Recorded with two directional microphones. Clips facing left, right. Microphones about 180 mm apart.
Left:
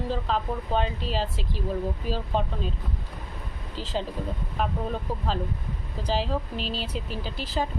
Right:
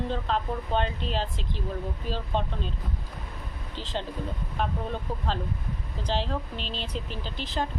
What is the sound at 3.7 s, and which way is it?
A woman's voice, 5° left (ahead or behind).